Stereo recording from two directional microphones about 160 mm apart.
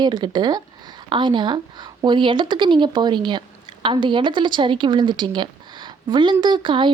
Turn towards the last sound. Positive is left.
turn(degrees=-30)  # may be behind; listen again after turning